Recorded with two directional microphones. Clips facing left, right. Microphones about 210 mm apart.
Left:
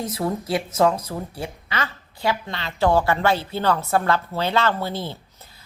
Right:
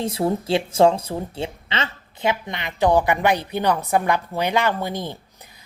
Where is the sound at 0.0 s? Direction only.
30° right (ahead or behind).